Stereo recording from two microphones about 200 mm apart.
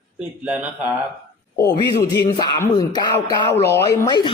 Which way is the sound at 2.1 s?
20° left (ahead or behind).